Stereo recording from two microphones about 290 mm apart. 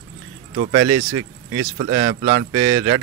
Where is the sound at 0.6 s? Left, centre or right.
Right.